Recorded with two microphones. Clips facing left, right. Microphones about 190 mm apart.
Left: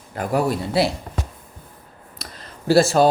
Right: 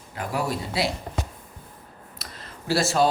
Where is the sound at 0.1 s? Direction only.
50° left (ahead or behind).